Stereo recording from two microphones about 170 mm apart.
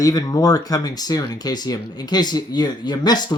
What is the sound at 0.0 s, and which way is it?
Speech, 20° left (ahead or behind).